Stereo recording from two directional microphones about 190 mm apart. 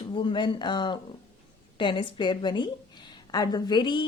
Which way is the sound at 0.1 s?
25° left (ahead or behind).